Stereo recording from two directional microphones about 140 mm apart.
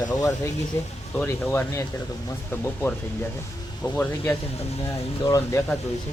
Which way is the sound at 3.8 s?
15° left (ahead or behind).